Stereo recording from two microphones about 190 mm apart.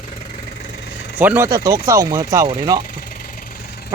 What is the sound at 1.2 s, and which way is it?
Speech, 10° right (ahead or behind).